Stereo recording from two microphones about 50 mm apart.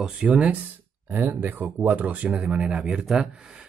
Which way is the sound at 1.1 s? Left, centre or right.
Right.